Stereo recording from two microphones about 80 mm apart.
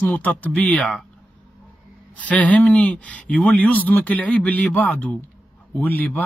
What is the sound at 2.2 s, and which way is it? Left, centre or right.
A man's voice, centre.